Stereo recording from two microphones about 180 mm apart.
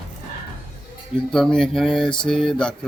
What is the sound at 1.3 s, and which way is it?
Speech, 5° left (ahead or behind).